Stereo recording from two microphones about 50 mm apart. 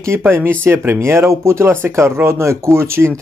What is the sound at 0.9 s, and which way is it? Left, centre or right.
Speech, right.